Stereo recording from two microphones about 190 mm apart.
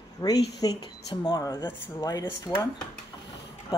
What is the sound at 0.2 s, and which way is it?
Speech, 20° left (ahead or behind).